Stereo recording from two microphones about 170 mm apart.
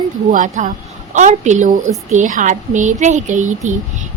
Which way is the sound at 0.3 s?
50° right (ahead or behind).